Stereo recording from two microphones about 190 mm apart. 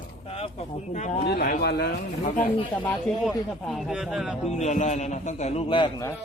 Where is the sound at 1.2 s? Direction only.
55° left (ahead or behind).